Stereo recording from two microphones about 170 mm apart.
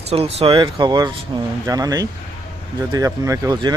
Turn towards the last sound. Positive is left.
turn(degrees=-25)  # may be behind; listen again after turning